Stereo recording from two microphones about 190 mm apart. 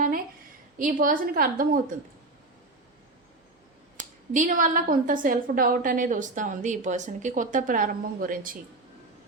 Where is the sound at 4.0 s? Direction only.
40° right (ahead or behind).